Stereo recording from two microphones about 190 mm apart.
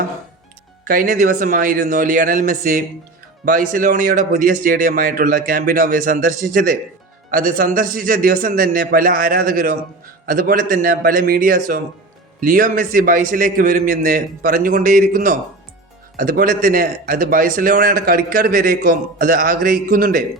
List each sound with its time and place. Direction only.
0.9 s a man's voice: 50° right (ahead or behind)